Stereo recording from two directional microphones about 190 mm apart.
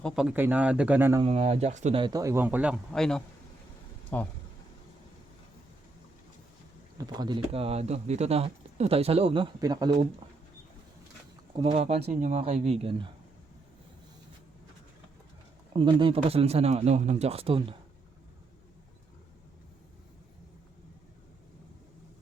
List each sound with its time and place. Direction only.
0.0 s speech: 5° right (ahead or behind)
1.2 s speech: 35° right (ahead or behind)
2.0 s speech: 20° right (ahead or behind); by 4.3 s 10° left (ahead or behind)
7.0 s speech: 20° right (ahead or behind)
11.5 s speech: 30° right (ahead or behind)
15.7 s speech: 25° right (ahead or behind)